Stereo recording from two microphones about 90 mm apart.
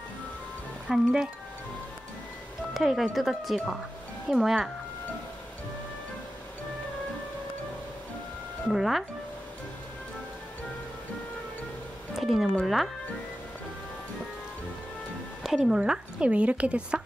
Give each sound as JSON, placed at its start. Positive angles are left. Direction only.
{"t": 0.8, "sound": "speech", "side_deg": -5}
{"t": 2.7, "sound": "speech", "side_deg": 0}
{"t": 8.6, "sound": "speech", "side_deg": 0}
{"t": 12.2, "sound": "speech", "side_deg": 0}
{"t": 15.4, "sound": "a woman's voice", "side_deg": -5}